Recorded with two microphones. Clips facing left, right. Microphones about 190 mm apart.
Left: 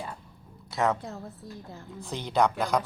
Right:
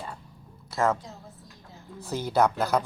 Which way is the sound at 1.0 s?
60° left (ahead or behind).